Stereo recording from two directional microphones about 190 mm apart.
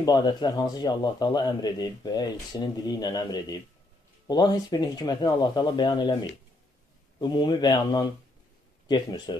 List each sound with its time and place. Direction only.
0.0 s speech: 20° left (ahead or behind)
7.2 s speech: 25° left (ahead or behind)